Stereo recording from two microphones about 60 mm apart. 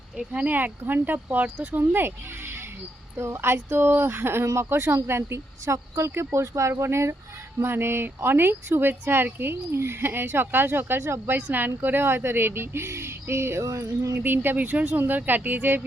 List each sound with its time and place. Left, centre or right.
0.3 s speech: right
11.3 s speech: right
13.7 s a sound: right
14.2 s speech: right